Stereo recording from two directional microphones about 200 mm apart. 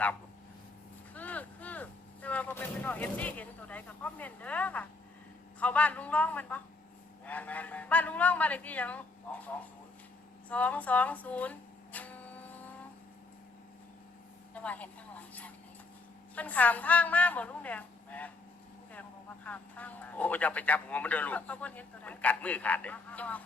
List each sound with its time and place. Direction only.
1.1 s a man's voice: 10° left (ahead or behind)
14.5 s a man's voice: 5° left (ahead or behind)
19.5 s a man's voice: 10° left (ahead or behind)